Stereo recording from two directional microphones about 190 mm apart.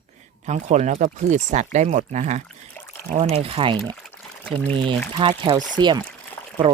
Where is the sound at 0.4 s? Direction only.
35° right (ahead or behind).